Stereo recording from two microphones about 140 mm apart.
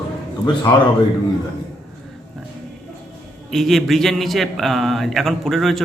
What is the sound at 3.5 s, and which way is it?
A man's voice, centre (ahead or behind).